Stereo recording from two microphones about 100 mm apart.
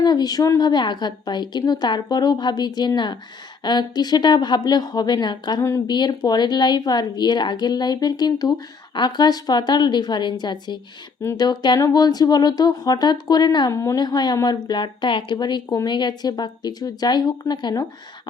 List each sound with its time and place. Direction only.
0.0 s speech: 45° left (ahead or behind)
0.7 s a woman's voice: 50° left (ahead or behind)
13.7 s a woman's voice: 35° left (ahead or behind)